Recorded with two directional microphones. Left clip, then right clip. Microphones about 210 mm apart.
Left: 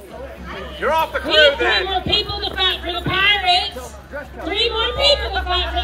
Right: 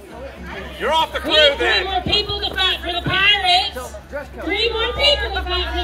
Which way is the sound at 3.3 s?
10° right (ahead or behind).